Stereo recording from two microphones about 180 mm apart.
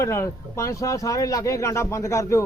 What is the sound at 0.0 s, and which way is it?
Speech, 15° left (ahead or behind).